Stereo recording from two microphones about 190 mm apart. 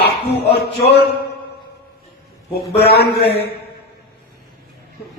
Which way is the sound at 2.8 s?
60° left (ahead or behind).